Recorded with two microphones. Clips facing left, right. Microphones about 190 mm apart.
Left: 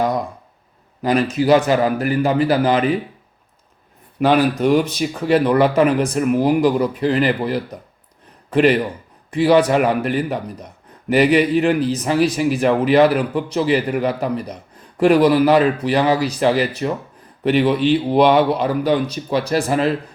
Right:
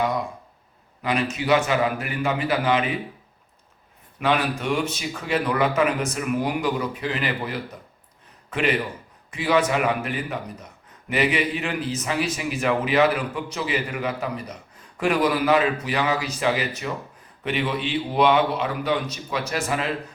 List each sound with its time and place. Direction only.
1.0 s speech: 35° left (ahead or behind)
4.2 s a man's voice: 35° left (ahead or behind)